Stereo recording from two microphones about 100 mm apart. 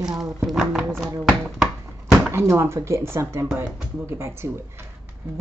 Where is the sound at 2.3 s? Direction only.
25° right (ahead or behind).